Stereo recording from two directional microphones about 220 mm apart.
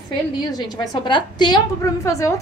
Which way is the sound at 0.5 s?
20° left (ahead or behind).